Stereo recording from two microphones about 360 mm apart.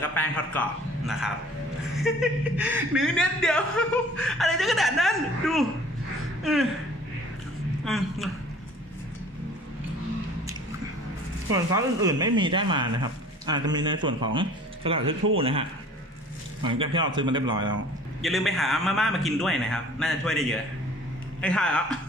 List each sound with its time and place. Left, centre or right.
0.0 s speech: centre
7.8 s a man's voice: centre
11.5 s speech: centre
16.6 s speech: centre
18.2 s speech: centre